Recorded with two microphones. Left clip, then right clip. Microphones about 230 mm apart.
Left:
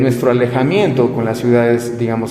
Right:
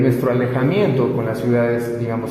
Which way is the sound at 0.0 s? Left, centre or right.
Left.